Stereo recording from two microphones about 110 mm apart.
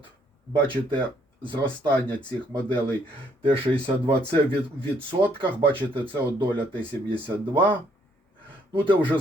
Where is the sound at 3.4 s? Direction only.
55° right (ahead or behind).